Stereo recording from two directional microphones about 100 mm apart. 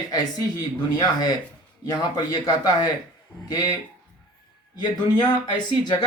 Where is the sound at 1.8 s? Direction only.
40° left (ahead or behind).